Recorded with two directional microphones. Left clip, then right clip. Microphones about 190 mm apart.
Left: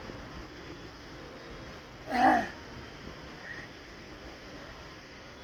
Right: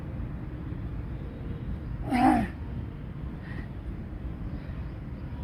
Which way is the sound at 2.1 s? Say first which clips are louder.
Even; 10° left (ahead or behind).